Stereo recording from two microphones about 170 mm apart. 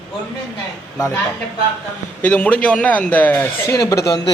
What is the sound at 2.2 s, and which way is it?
A man's voice, 10° left (ahead or behind).